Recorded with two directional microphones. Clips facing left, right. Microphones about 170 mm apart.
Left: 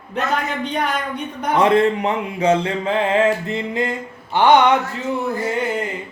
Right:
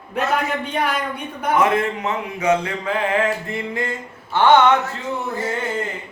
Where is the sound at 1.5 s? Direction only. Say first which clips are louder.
Left 4 dB; 30° left (ahead or behind).